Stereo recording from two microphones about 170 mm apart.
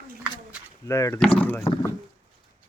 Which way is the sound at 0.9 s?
15° left (ahead or behind).